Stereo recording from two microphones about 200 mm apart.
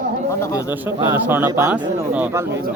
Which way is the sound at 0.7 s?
10° right (ahead or behind).